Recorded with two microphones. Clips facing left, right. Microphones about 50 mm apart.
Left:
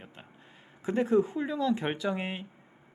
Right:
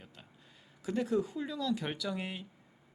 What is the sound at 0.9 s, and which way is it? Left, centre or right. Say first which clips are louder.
Speech: left 6 dB; left.